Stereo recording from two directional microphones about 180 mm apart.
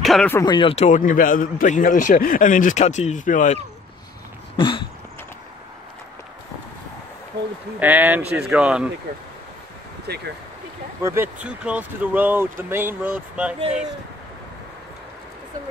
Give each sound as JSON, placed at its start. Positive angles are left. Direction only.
{"t": 0.0, "sound": "speech", "side_deg": 0}
{"t": 0.3, "sound": "a man's voice", "side_deg": 20}
{"t": 4.6, "sound": "a sound", "side_deg": 25}
{"t": 7.8, "sound": "speech", "side_deg": -10}
{"t": 10.0, "sound": "speech", "side_deg": -65}
{"t": 11.0, "sound": "speech", "side_deg": -15}